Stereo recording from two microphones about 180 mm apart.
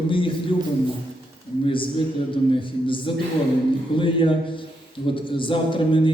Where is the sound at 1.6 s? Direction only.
30° left (ahead or behind).